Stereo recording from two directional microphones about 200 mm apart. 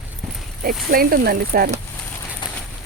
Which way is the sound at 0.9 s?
50° right (ahead or behind).